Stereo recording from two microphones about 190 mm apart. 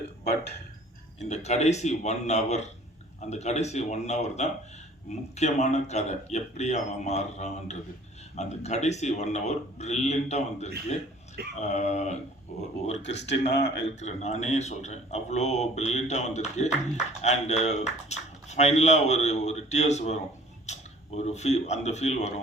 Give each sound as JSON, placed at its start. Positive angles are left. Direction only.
{"t": 0.3, "sound": "speech", "side_deg": 60}
{"t": 1.2, "sound": "speech", "side_deg": 35}
{"t": 13.0, "sound": "speech", "side_deg": 65}
{"t": 14.0, "sound": "speech", "side_deg": 35}
{"t": 20.7, "sound": "camera", "side_deg": 35}
{"t": 21.2, "sound": "speech", "side_deg": 35}